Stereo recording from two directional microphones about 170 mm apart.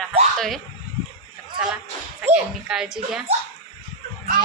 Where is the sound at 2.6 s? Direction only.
5° right (ahead or behind).